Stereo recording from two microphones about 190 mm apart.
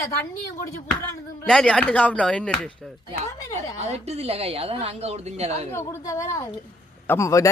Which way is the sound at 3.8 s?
35° right (ahead or behind).